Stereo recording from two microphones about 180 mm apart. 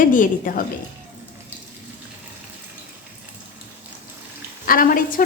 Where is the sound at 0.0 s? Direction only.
50° left (ahead or behind).